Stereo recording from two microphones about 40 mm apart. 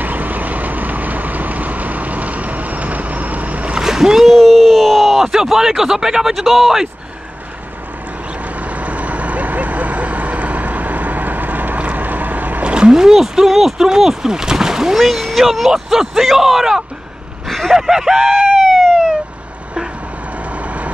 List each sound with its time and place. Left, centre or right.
0.0 s vehicle: right
3.7 s splash: centre
4.4 s a sound: centre
5.2 s speech: centre
6.3 s speech: centre
8.5 s vehicle: right
11.8 s boat: right
12.6 s a sound: right
12.9 s speech: centre
17.5 s a sound: centre
17.7 s a sound: centre
20.5 s vehicle: right